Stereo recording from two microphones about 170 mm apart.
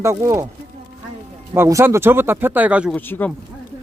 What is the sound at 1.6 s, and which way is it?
Speech, 15° right (ahead or behind).